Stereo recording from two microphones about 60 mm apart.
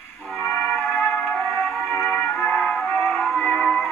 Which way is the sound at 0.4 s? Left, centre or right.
Left.